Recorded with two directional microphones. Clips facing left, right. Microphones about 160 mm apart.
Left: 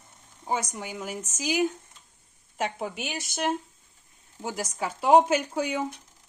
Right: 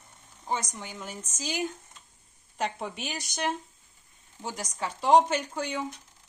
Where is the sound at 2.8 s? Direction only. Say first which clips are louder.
Left 3 dB; 5° left (ahead or behind).